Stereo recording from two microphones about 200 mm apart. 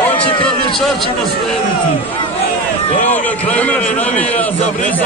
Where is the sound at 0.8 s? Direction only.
Centre (ahead or behind).